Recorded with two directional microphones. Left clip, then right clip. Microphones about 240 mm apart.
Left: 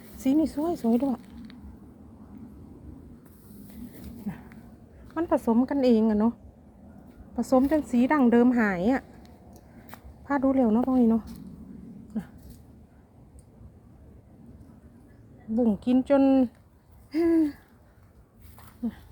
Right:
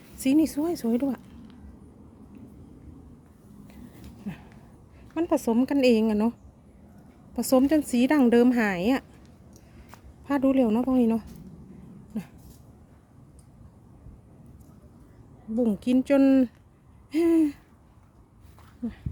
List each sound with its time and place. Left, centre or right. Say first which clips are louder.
0.3 s a woman's voice: right 2 dB; centre
4.3 s a sound: even; right
5.5 s a woman's voice: right 3 dB; right
7.3 s a woman's voice: right 1 dB; right
10.2 s a woman's voice: right 1 dB; right
15.5 s a woman's voice: even; centre
17.1 s hoot: right 1 dB; centre